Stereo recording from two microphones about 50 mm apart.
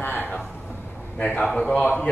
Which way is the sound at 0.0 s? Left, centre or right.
Left.